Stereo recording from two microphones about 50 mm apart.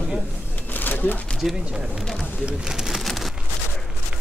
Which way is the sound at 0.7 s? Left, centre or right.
Left.